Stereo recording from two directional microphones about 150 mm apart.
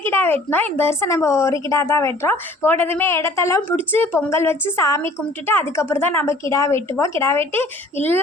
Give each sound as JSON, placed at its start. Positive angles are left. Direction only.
{"t": 0.0, "sound": "a woman's voice", "side_deg": 15}